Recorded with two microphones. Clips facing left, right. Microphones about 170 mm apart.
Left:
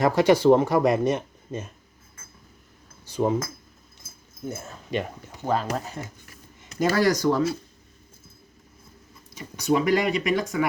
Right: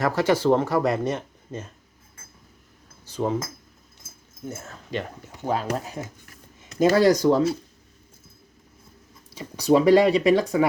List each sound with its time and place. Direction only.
0.0 s speech: 15° left (ahead or behind)
3.1 s speech: 15° left (ahead or behind)
4.4 s speech: 15° left (ahead or behind)
5.5 s speech: 5° right (ahead or behind)
6.7 s speech: 25° right (ahead or behind)
9.3 s speech: 30° right (ahead or behind)